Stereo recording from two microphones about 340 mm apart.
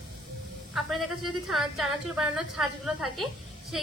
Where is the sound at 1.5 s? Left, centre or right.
Centre.